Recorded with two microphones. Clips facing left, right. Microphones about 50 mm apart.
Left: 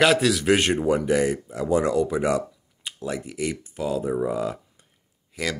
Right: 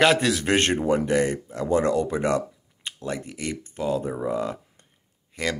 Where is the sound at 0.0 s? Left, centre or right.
Centre.